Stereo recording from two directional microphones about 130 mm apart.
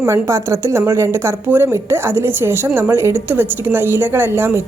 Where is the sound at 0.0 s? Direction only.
20° right (ahead or behind).